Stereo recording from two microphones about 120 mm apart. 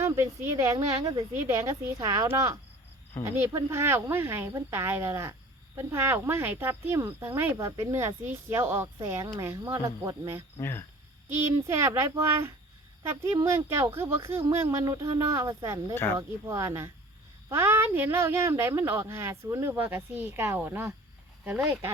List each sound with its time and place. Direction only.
0.0 s speech: 20° right (ahead or behind)
10.6 s speech: 20° left (ahead or behind)
11.7 s speech: 20° right (ahead or behind)